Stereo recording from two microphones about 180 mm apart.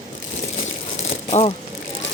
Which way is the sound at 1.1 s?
35° left (ahead or behind).